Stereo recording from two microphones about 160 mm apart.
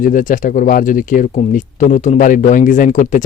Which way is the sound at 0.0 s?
55° left (ahead or behind).